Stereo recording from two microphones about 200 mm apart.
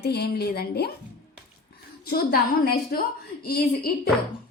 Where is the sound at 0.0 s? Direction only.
55° left (ahead or behind).